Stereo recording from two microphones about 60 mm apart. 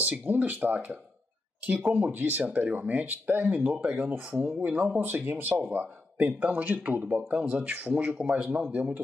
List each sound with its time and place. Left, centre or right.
0.0 s speech: right
3.7 s speech: centre
7.4 s speech: centre